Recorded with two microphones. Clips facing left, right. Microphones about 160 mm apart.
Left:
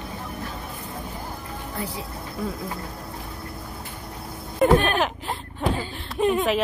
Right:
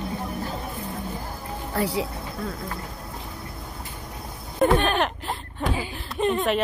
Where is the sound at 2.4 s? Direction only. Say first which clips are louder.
Left 3 dB; 5° left (ahead or behind).